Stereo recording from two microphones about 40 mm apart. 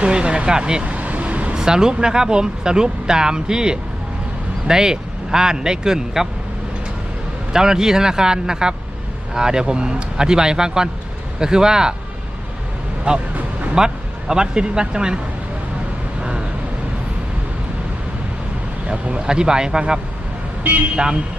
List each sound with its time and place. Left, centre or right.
0.0 s speech: right
0.9 s vehicle: right
1.5 s speech: centre
7.5 s speech: centre
13.1 s speech: right
13.7 s speech: centre
18.9 s speech: right
20.9 s speech: right